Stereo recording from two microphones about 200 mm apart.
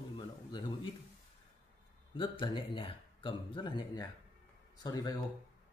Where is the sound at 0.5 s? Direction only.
25° left (ahead or behind).